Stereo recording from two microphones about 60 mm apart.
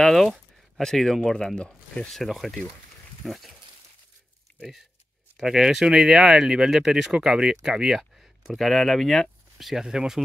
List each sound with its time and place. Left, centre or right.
0.0 s speech: centre
2.1 s speech: centre
4.5 s a sound: left
5.4 s speech: centre